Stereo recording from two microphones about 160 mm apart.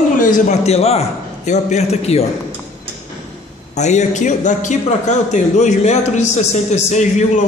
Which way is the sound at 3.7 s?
45° left (ahead or behind).